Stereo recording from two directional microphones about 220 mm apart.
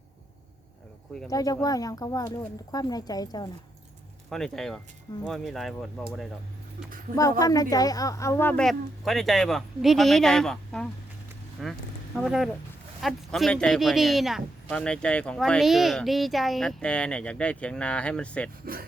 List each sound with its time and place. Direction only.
1.3 s speech: 15° left (ahead or behind)
4.3 s speech: centre (ahead or behind)
7.2 s speech: 15° left (ahead or behind)
18.6 s speech: 40° right (ahead or behind)